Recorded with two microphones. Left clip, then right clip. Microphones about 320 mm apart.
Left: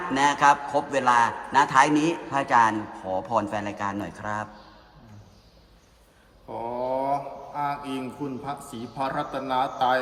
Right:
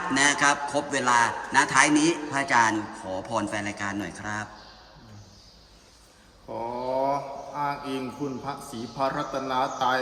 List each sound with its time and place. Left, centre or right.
0.1 s a man's voice: centre
6.5 s a sound: centre
8.5 s speech: centre